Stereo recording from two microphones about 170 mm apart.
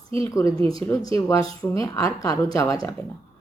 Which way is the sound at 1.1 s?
20° left (ahead or behind).